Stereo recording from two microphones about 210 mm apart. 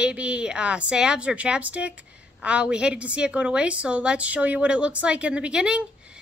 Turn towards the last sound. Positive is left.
turn(degrees=-5)  # may be behind; listen again after turning